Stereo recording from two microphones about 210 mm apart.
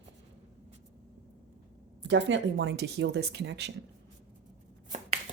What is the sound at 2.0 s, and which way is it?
Speech, 60° right (ahead or behind).